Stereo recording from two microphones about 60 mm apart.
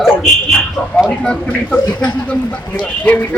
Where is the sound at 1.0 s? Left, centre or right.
Centre.